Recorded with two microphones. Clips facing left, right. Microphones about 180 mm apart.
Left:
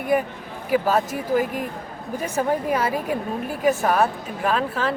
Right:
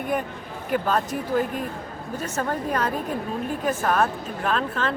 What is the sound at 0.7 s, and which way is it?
A woman's voice, 5° left (ahead or behind).